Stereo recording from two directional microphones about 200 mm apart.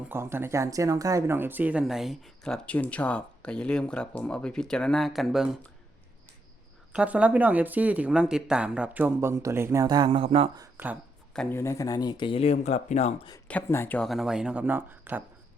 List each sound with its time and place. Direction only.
0.1 s speech: 10° right (ahead or behind)
6.9 s speech: 5° right (ahead or behind); by 10.6 s 30° right (ahead or behind)
10.6 s speech: 10° right (ahead or behind)
11.3 s speech: 10° left (ahead or behind); by 13.1 s 35° left (ahead or behind)
13.5 s speech: 10° left (ahead or behind); by 15.2 s 10° right (ahead or behind)